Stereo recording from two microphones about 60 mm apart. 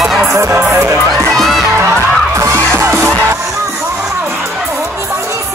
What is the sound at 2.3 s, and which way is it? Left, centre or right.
Music, right.